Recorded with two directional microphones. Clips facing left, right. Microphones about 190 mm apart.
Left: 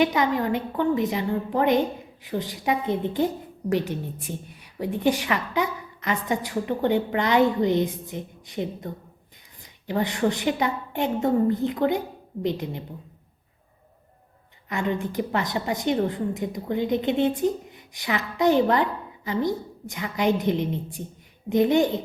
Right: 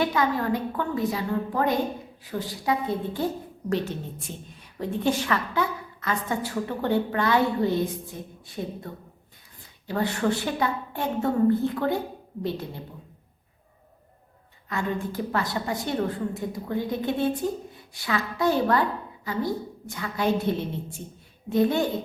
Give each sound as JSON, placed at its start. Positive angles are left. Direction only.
{"t": 0.0, "sound": "a woman's voice", "side_deg": 20}
{"t": 14.7, "sound": "a woman's voice", "side_deg": 20}